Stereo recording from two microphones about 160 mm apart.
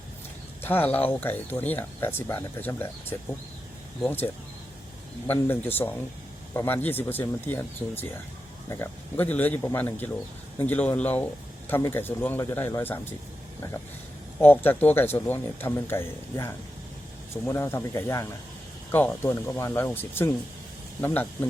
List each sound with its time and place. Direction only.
0.6 s speech: 10° left (ahead or behind)
5.3 s speech: 15° left (ahead or behind)
14.4 s speech: 10° left (ahead or behind)